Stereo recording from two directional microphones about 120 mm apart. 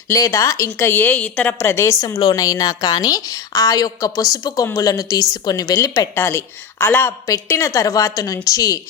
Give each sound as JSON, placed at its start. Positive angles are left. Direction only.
{"t": 0.1, "sound": "a woman's voice", "side_deg": 25}
{"t": 1.5, "sound": "a woman's voice", "side_deg": 20}